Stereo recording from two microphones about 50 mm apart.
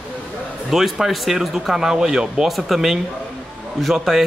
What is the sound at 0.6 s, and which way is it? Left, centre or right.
Speech, centre.